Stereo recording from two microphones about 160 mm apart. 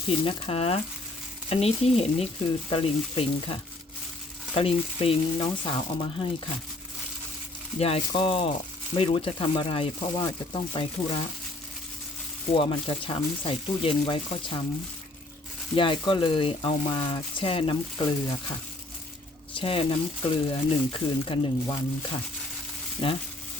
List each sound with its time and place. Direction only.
0.1 s speech: 35° left (ahead or behind)
7.8 s speech: 40° left (ahead or behind)
12.5 s speech: 35° left (ahead or behind)
15.7 s speech: 30° left (ahead or behind)
19.5 s speech: 35° left (ahead or behind)
23.0 s speech: 35° left (ahead or behind)